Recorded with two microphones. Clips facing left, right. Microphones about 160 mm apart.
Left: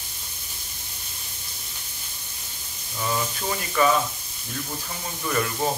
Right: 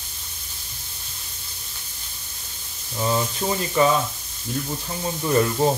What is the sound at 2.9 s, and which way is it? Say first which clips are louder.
Speech: right 4 dB; 30° right (ahead or behind).